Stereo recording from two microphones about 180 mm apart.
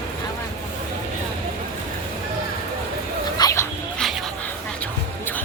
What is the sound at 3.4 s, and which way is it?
Dog, 25° left (ahead or behind).